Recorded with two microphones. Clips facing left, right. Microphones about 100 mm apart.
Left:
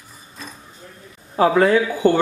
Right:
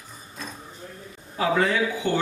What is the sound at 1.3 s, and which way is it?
Speech, 40° left (ahead or behind).